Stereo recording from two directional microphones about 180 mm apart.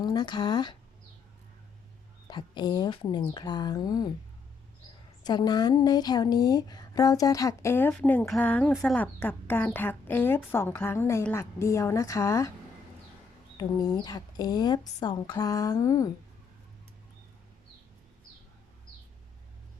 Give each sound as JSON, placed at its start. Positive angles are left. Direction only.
{"t": 0.0, "sound": "speech", "side_deg": 25}
{"t": 2.2, "sound": "speech", "side_deg": 25}
{"t": 5.2, "sound": "speech", "side_deg": 25}
{"t": 13.6, "sound": "speech", "side_deg": 20}